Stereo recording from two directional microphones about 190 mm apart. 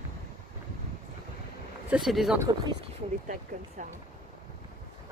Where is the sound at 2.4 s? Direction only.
20° right (ahead or behind).